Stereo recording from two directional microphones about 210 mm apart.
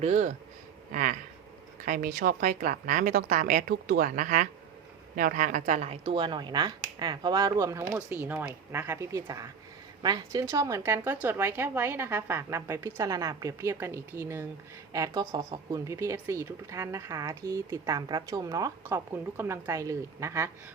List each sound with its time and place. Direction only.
0.0 s a woman's voice: 35° right (ahead or behind)
1.8 s a woman's voice: 40° right (ahead or behind); by 20.5 s 15° right (ahead or behind)